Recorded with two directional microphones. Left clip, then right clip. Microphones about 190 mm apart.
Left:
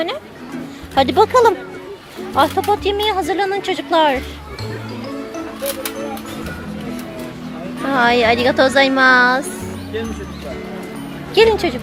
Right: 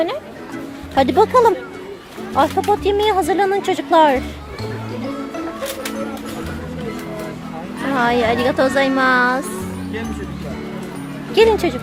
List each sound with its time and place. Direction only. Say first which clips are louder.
0.9 s a woman's voice: left 1 dB; 5° right (ahead or behind)
7.9 s a woman's voice: left 3 dB; 5° left (ahead or behind)
11.3 s a woman's voice: left 1 dB; centre (ahead or behind)